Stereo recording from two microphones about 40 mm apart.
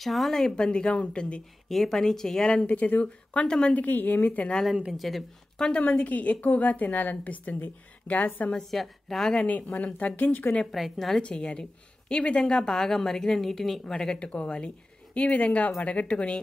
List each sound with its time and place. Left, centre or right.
0.0 s a woman's voice: centre
0.6 s speech: left
1.7 s a woman's voice: centre
2.6 s speech: left
3.4 s a woman's voice: centre
3.7 s a woman's voice: left
4.9 s a woman's voice: centre
5.8 s a woman's voice: left
8.5 s a woman's voice: centre
9.5 s a woman's voice: left
10.7 s a woman's voice: centre
11.1 s speech: left
12.5 s a woman's voice: centre
13.9 s speech: left